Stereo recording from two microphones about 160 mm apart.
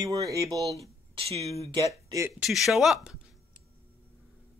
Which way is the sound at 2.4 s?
Centre (ahead or behind).